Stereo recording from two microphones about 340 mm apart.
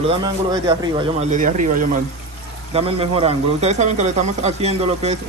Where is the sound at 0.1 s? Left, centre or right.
Centre.